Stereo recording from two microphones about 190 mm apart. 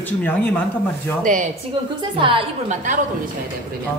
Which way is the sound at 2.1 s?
25° right (ahead or behind).